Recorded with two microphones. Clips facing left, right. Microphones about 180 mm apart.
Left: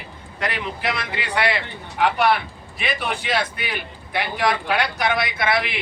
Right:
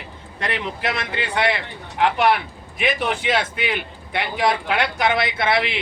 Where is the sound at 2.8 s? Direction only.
20° right (ahead or behind).